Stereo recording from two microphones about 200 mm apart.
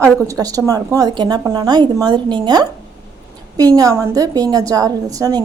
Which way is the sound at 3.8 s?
15° right (ahead or behind).